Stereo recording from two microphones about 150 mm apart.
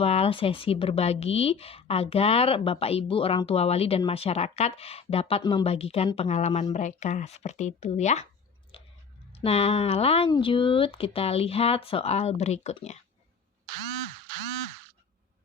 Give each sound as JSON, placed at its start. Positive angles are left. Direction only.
{"t": 0.0, "sound": "speech", "side_deg": 40}
{"t": 5.4, "sound": "speech", "side_deg": 30}
{"t": 5.6, "sound": "speech", "side_deg": 40}
{"t": 9.3, "sound": "speech", "side_deg": 40}